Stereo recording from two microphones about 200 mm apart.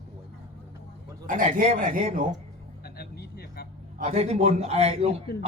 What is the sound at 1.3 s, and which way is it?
A man's voice, 40° right (ahead or behind).